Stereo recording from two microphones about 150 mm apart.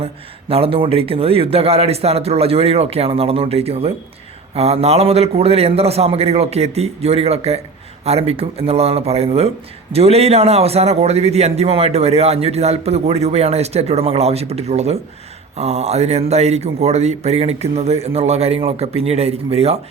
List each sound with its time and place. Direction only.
0.0 s a man's voice: 40° right (ahead or behind)